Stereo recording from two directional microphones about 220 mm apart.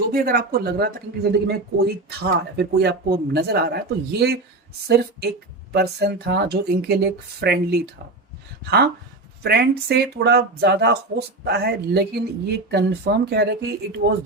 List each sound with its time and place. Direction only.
0.1 s speech: 40° right (ahead or behind)
9.4 s speech: 45° right (ahead or behind)